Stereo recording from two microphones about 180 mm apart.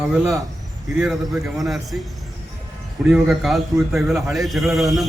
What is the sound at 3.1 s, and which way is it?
A man's voice, centre (ahead or behind).